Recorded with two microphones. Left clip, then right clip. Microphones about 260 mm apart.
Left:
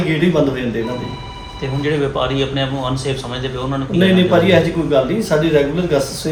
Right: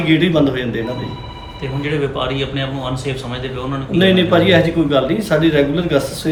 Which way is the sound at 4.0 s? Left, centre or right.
Centre.